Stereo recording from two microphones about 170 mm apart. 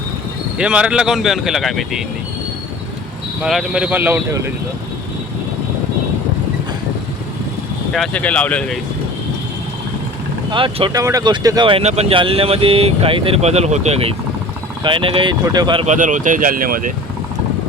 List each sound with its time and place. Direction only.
0.6 s speech: 5° right (ahead or behind)
3.4 s speech: centre (ahead or behind)
7.9 s speech: 5° left (ahead or behind)
10.5 s speech: 30° right (ahead or behind)
15.9 s speech: 50° right (ahead or behind)